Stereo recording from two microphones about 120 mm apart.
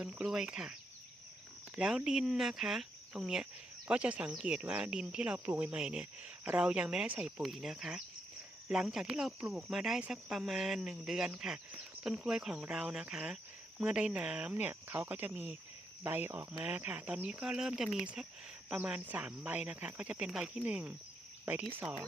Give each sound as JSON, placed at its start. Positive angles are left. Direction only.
{"t": 0.0, "sound": "speech", "side_deg": -10}